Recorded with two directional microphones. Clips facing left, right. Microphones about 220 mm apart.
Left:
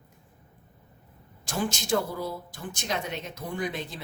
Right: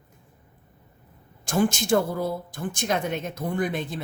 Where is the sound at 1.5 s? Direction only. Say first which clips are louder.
Right 6 dB; 50° right (ahead or behind).